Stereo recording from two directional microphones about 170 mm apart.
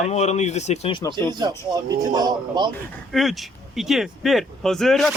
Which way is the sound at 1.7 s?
25° right (ahead or behind).